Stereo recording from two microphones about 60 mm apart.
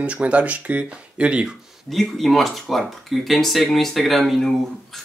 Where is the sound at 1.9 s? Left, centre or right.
Centre.